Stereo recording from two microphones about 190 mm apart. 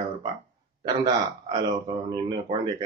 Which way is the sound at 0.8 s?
25° right (ahead or behind).